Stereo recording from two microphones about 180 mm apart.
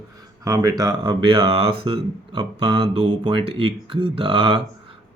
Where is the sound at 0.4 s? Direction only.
20° right (ahead or behind).